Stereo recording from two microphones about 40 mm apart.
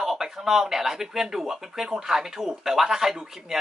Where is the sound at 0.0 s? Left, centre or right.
Centre.